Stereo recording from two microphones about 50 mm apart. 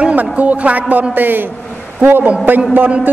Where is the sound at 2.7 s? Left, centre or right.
Right.